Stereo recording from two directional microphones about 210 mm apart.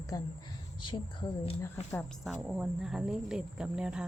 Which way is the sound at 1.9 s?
Centre (ahead or behind).